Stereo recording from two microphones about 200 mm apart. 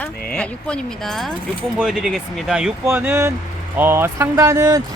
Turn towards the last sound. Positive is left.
turn(degrees=-15)  # may be behind; listen again after turning